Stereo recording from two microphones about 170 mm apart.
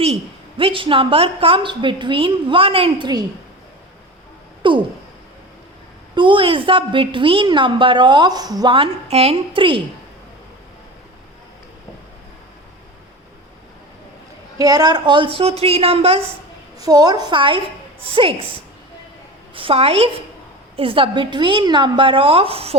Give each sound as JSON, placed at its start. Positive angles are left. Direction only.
{"t": 0.0, "sound": "a woman's voice", "side_deg": -35}
{"t": 4.6, "sound": "a sound", "side_deg": -30}
{"t": 6.1, "sound": "a woman's voice", "side_deg": -30}
{"t": 14.6, "sound": "a woman's voice", "side_deg": -20}
{"t": 16.8, "sound": "a woman's voice", "side_deg": -20}
{"t": 19.5, "sound": "a woman's voice", "side_deg": -35}